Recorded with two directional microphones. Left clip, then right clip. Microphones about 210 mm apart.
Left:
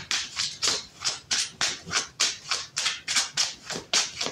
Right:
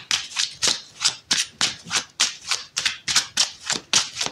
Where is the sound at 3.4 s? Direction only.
35° right (ahead or behind).